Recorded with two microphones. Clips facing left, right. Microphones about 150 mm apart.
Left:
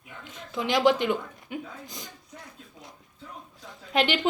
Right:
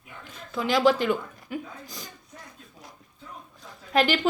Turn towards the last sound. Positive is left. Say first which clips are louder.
# right 2 dB
turn(degrees=20)  # may be behind; listen again after turning